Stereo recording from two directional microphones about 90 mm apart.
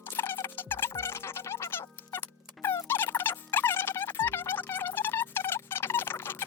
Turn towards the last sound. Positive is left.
turn(degrees=25)  # may be behind; listen again after turning